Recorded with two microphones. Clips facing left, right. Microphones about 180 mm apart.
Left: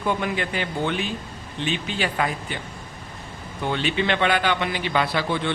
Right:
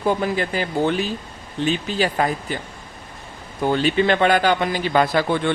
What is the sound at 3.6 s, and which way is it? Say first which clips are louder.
Speech: right 6 dB; 40° right (ahead or behind).